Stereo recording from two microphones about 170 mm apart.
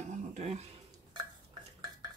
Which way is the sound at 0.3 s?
40° right (ahead or behind).